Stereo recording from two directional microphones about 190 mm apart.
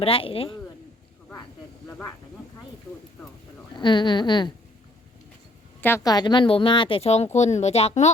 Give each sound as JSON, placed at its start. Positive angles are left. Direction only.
{"t": 0.0, "sound": "speech", "side_deg": 30}
{"t": 3.8, "sound": "speech", "side_deg": 25}
{"t": 5.8, "sound": "speech", "side_deg": 15}